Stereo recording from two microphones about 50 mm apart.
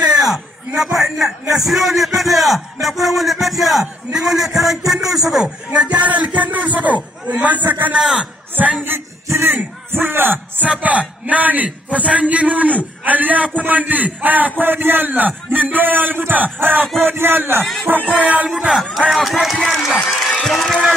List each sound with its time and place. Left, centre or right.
0.0 s a sound: centre
0.9 s a man's voice: centre
5.7 s music: centre
6.0 s a man's voice: right
8.0 s a man's voice: centre
9.8 s a man's voice: right
10.6 s a man's voice: right
17.6 s speech: centre
18.0 s a man's voice: right
18.5 s a man's voice: centre
19.1 s a man's voice: centre
20.0 s a sound: centre
20.4 s a man's voice: centre